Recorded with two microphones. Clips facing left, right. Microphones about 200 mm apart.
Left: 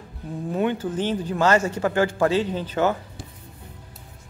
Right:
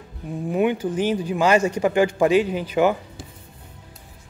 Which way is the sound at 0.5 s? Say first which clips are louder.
Right 3 dB; 15° right (ahead or behind).